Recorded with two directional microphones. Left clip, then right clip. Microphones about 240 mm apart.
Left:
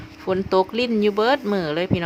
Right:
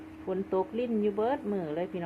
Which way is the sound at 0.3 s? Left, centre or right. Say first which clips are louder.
Left 11 dB; left.